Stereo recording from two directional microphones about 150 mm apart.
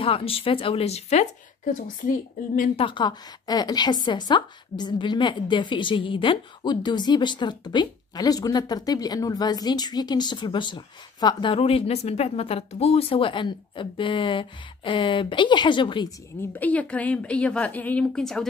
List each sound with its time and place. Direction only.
0.0 s a woman's voice: 40° left (ahead or behind)
1.7 s a woman's voice: 65° left (ahead or behind)
2.7 s a woman's voice: 35° left (ahead or behind)
16.3 s a woman's voice: 10° left (ahead or behind)